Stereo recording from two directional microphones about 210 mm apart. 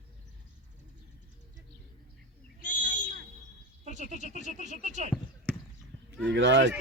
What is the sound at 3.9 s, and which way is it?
Speech, 35° right (ahead or behind).